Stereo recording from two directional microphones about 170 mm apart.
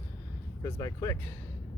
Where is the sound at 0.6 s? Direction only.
15° left (ahead or behind).